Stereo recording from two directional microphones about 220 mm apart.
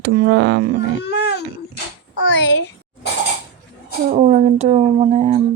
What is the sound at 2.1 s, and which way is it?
Speech, 55° left (ahead or behind).